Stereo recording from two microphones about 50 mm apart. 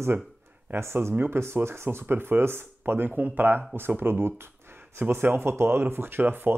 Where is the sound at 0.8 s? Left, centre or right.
Right.